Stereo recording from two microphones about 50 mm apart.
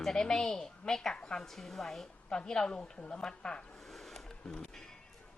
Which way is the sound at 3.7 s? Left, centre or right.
Centre.